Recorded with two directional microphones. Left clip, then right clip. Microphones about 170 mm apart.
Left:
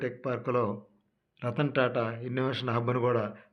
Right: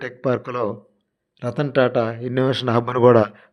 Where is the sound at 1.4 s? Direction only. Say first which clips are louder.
Right 9 dB; 35° right (ahead or behind).